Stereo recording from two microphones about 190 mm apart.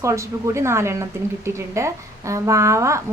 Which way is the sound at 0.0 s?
15° right (ahead or behind).